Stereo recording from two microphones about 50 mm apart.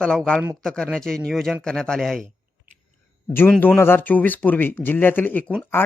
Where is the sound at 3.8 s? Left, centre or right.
Left.